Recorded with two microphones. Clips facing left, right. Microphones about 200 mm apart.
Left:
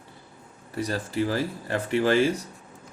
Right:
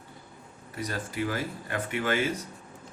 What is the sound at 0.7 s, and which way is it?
Speech, 35° left (ahead or behind).